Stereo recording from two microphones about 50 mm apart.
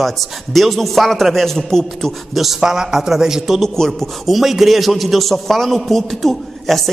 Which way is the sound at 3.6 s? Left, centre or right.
Centre.